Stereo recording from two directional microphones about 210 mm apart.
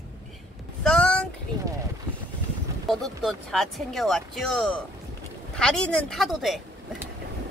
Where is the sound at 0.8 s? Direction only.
5° left (ahead or behind).